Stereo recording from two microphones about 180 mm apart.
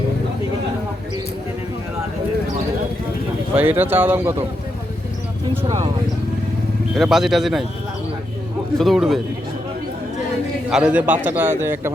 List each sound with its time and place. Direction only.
3.5 s a man's voice: 10° right (ahead or behind)
5.6 s speech: 25° right (ahead or behind)
6.9 s speech: centre (ahead or behind)
8.8 s speech: centre (ahead or behind)
10.7 s a man's voice: 5° right (ahead or behind)